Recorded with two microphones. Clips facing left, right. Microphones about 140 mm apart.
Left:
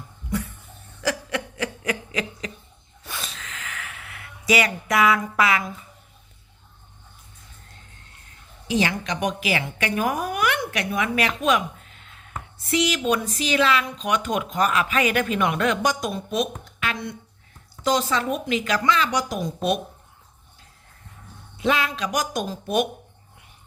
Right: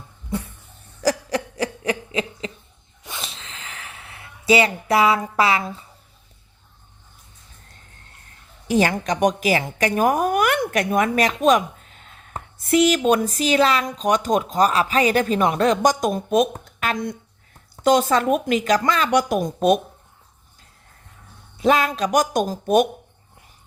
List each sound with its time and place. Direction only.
1.0 s snicker: 35° right (ahead or behind)
3.0 s snort: 20° right (ahead or behind)
8.6 s a woman's voice: 50° right (ahead or behind)
21.6 s speech: 40° right (ahead or behind)